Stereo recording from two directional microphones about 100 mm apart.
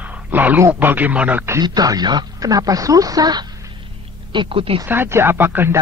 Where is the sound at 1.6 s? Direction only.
40° right (ahead or behind).